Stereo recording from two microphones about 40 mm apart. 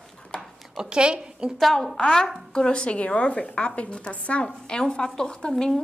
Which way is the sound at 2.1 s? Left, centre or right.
Centre.